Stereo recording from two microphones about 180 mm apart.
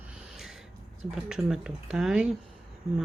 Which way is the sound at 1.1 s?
5° right (ahead or behind).